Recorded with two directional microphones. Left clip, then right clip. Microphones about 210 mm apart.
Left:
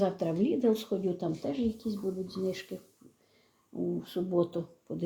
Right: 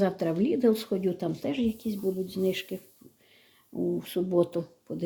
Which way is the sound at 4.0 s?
15° right (ahead or behind).